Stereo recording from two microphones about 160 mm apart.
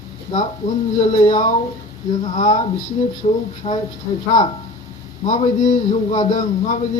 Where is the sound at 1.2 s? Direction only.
50° left (ahead or behind).